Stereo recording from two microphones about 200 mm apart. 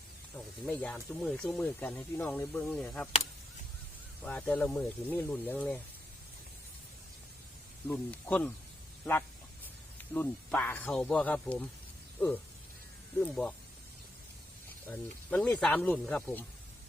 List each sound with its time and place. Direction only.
0.3 s speech: 5° left (ahead or behind)
4.2 s speech: 5° left (ahead or behind)
7.9 s speech: 5° left (ahead or behind)
10.0 s speech: 5° left (ahead or behind)
14.8 s speech: 10° left (ahead or behind)